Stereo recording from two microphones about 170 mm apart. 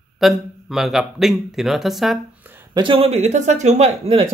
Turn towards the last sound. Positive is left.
turn(degrees=-35)  # may be behind; listen again after turning